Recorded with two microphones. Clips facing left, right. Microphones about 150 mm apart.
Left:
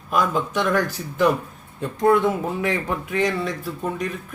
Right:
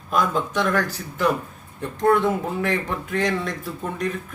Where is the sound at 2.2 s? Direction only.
5° left (ahead or behind).